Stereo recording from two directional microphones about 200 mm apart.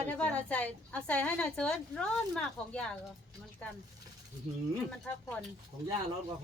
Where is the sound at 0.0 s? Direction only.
5° left (ahead or behind).